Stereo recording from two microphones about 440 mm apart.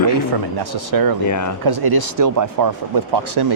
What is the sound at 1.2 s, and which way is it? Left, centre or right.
Speech, left.